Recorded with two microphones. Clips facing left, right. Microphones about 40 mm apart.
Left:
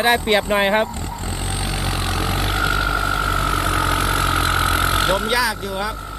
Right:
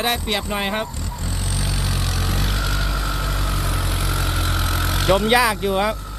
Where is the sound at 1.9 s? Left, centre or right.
Left.